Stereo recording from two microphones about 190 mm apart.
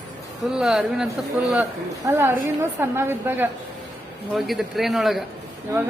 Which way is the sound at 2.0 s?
15° right (ahead or behind).